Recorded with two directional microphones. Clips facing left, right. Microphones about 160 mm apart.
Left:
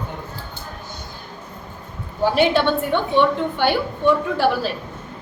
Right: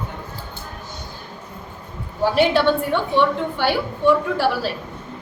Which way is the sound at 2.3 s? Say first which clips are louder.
Right 1 dB; centre (ahead or behind).